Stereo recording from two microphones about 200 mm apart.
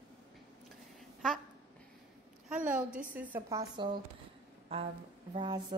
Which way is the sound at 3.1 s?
10° right (ahead or behind).